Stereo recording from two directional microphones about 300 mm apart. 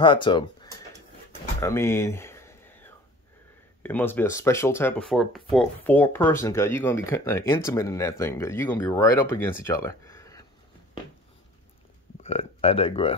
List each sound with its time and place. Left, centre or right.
0.0 s speech: centre
1.6 s a sound: centre
3.8 s speech: centre
12.2 s speech: centre